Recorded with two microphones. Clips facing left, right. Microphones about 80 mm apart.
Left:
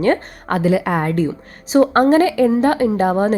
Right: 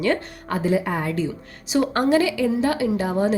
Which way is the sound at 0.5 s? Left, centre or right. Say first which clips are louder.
Left 5 dB; left.